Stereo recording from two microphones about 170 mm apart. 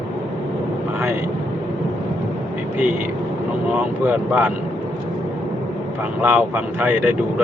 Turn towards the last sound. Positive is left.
turn(degrees=-10)  # may be behind; listen again after turning